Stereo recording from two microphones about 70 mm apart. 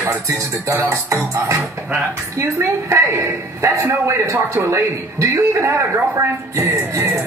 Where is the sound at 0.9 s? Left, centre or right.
Right.